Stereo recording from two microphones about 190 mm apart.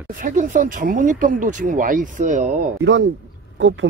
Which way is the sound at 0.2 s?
45° right (ahead or behind).